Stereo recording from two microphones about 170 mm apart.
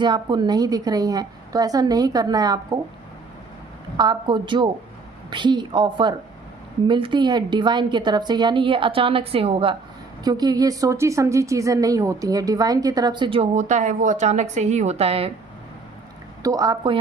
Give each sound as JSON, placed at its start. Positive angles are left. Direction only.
{"t": 0.0, "sound": "a woman's voice", "side_deg": -25}
{"t": 3.9, "sound": "a woman's voice", "side_deg": -25}
{"t": 10.2, "sound": "a woman's voice", "side_deg": -20}
{"t": 13.5, "sound": "a woman's voice", "side_deg": -45}
{"t": 16.4, "sound": "a woman's voice", "side_deg": -20}